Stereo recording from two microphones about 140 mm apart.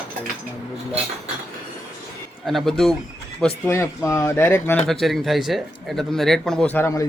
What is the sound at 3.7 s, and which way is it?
Speech, 20° left (ahead or behind).